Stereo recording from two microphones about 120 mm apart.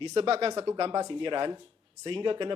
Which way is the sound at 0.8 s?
40° right (ahead or behind).